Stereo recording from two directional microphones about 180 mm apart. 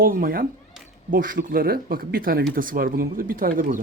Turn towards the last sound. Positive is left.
turn(degrees=-50)  # may be behind; listen again after turning